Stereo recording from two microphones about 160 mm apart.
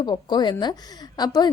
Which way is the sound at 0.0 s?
25° left (ahead or behind).